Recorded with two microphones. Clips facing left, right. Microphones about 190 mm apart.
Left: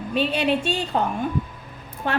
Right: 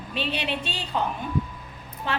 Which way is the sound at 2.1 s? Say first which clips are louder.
Left 5 dB; 55° left (ahead or behind).